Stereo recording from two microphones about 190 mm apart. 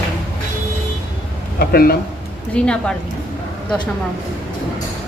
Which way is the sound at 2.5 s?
5° left (ahead or behind).